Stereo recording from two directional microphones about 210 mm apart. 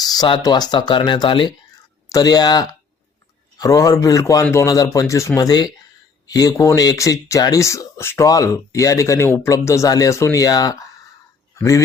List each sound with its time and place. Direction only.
0.0 s speech: 20° left (ahead or behind)